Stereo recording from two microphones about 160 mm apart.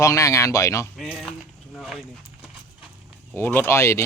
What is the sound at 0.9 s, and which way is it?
Speech, centre (ahead or behind).